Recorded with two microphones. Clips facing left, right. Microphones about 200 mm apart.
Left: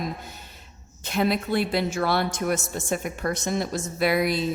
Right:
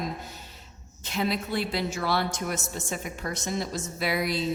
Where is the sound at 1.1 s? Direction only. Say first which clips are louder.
Left 5 dB; 55° left (ahead or behind).